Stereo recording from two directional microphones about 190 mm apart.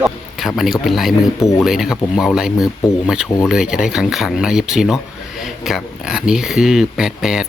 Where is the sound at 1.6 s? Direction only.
Centre (ahead or behind).